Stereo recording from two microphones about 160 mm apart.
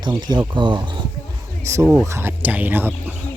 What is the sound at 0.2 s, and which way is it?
Speech, 25° right (ahead or behind).